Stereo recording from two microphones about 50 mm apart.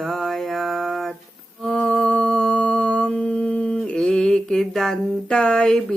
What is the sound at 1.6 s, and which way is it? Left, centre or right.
Music, centre.